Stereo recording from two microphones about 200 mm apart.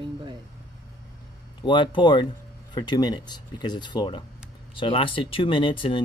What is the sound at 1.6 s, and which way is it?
Speech, 25° left (ahead or behind).